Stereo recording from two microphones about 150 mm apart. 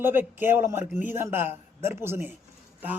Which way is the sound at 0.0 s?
15° right (ahead or behind).